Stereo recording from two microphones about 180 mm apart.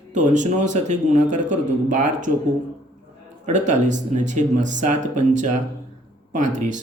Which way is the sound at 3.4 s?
40° right (ahead or behind).